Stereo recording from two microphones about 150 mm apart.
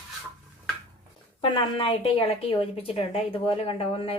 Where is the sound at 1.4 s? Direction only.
35° left (ahead or behind).